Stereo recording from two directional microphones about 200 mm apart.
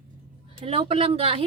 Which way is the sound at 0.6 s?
30° right (ahead or behind).